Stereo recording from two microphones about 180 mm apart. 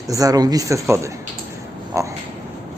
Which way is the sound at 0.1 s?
20° right (ahead or behind).